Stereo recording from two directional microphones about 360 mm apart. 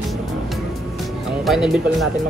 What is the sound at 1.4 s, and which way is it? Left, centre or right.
Speech, centre.